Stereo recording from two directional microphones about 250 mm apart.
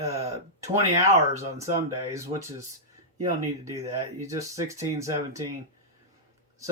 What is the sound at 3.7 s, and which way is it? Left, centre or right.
Speech, centre.